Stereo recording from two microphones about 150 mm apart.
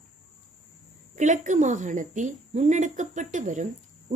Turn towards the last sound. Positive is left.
turn(degrees=-55)  # may be behind; listen again after turning